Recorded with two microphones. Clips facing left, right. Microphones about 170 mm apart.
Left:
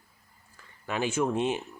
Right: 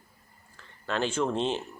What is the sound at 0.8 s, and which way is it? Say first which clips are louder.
Speech: even; 10° left (ahead or behind).